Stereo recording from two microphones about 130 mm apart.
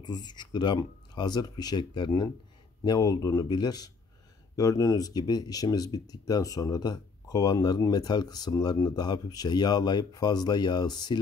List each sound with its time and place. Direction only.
0.0 s speech: 35° left (ahead or behind)